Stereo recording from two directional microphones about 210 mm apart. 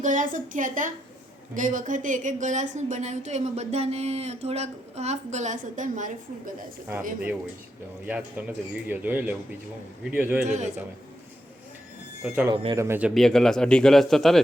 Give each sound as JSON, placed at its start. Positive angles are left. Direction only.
{"t": 0.0, "sound": "speech", "side_deg": -35}
{"t": 8.0, "sound": "speech", "side_deg": -5}
{"t": 10.4, "sound": "speech", "side_deg": -35}
{"t": 12.2, "sound": "speech", "side_deg": -5}